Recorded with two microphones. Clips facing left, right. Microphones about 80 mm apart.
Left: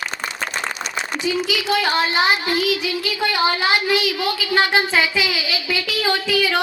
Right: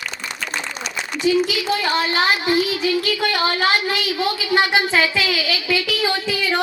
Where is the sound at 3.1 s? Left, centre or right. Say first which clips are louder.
Even; left.